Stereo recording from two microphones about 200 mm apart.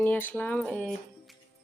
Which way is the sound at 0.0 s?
10° left (ahead or behind).